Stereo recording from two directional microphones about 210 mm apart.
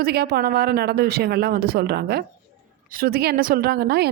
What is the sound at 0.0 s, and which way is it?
A woman's voice, 50° right (ahead or behind).